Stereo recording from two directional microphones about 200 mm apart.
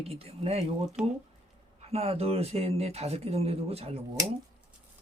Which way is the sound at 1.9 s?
30° right (ahead or behind).